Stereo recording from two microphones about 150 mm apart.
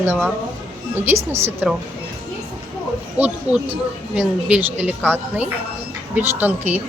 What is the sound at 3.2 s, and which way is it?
Speech, 10° right (ahead or behind).